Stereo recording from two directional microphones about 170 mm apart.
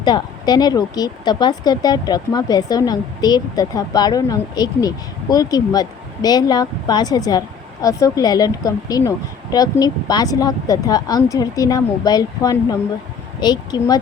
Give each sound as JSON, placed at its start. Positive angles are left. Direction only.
{"t": 0.0, "sound": "speech", "side_deg": 25}